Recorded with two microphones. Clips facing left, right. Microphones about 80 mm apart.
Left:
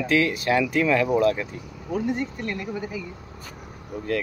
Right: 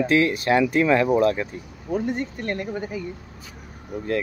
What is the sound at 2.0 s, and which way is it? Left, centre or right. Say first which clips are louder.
Speech: even; right.